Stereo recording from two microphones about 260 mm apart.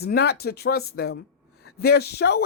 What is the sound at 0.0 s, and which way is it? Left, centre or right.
Speech, left.